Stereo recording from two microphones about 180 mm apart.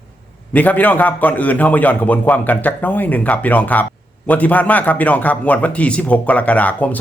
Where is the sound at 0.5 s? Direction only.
10° left (ahead or behind).